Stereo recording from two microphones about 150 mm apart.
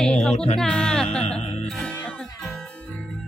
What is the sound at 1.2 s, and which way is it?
Music, 45° left (ahead or behind).